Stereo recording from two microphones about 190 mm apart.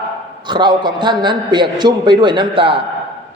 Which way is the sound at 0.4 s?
25° right (ahead or behind).